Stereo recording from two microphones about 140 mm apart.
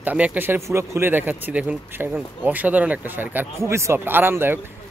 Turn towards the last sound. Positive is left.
turn(degrees=-15)  # may be behind; listen again after turning